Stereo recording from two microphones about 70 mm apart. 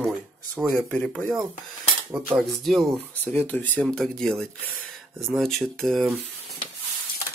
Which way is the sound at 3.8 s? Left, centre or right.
Centre.